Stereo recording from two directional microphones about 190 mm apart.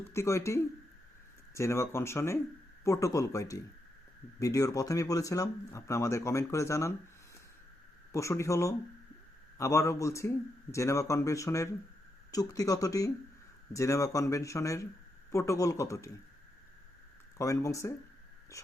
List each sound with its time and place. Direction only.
0.1 s speech: 15° left (ahead or behind)
8.1 s speech: 15° left (ahead or behind)
17.3 s speech: 15° left (ahead or behind)